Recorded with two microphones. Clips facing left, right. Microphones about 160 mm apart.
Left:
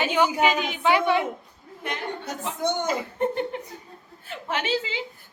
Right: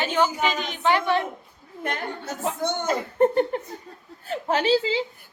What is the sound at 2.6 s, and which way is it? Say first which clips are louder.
Speech: left 1 dB; 10° left (ahead or behind).